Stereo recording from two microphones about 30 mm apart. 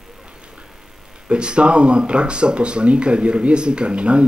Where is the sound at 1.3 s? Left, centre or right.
Right.